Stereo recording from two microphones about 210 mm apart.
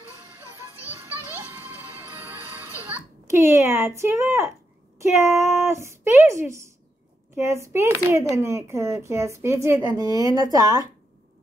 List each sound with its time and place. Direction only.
0.8 s music: 10° right (ahead or behind)
2.9 s speech: 15° right (ahead or behind)